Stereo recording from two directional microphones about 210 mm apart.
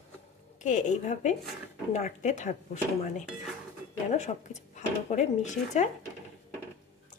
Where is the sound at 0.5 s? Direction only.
35° left (ahead or behind).